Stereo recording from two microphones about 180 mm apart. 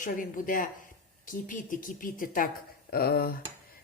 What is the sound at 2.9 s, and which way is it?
Speech, 60° left (ahead or behind).